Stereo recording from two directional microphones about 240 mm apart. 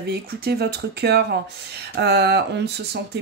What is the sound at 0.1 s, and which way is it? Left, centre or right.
Speech, right.